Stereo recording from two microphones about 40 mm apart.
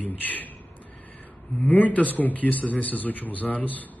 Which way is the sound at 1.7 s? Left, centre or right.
Left.